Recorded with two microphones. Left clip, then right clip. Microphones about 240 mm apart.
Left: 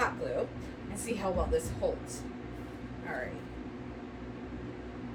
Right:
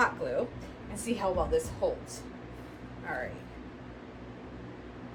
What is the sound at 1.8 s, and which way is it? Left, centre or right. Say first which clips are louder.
Speech: right 1 dB; right.